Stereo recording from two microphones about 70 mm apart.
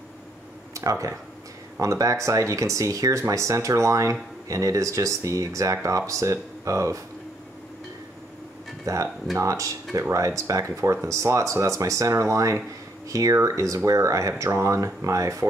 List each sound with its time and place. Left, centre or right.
0.7 s speech: right
8.8 s speech: right